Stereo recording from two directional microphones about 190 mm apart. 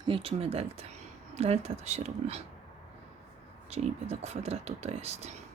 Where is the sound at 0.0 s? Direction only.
30° right (ahead or behind).